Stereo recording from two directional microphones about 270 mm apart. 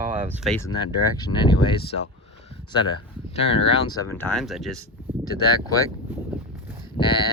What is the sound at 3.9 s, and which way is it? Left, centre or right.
Speech, centre.